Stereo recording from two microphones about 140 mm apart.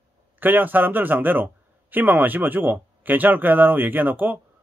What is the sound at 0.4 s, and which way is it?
A man's voice, 15° right (ahead or behind).